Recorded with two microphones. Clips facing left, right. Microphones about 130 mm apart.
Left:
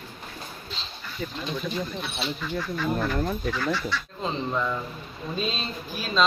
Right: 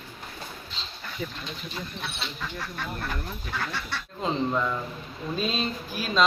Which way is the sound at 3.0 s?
55° left (ahead or behind).